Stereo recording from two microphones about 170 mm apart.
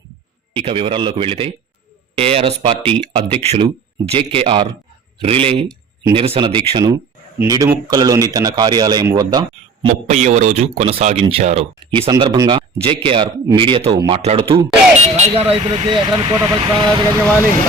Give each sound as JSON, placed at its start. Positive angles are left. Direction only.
{"t": 0.5, "sound": "speech", "side_deg": -35}
{"t": 9.9, "sound": "speech", "side_deg": -45}